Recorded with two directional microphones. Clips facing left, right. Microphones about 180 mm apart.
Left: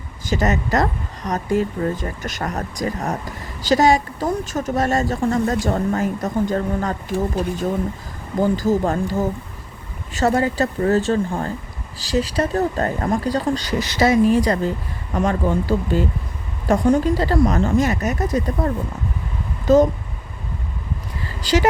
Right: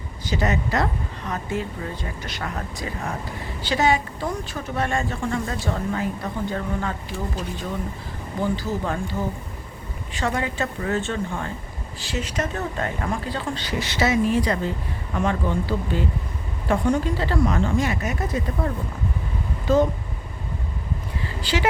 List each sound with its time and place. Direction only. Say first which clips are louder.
0.3 s speech: left 4 dB; 45° left (ahead or behind)
8.4 s speech: left 7 dB; 45° left (ahead or behind)
21.4 s speech: left 6 dB; 40° left (ahead or behind)